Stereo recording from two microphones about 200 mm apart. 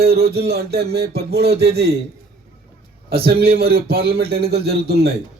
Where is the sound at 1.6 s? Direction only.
55° right (ahead or behind).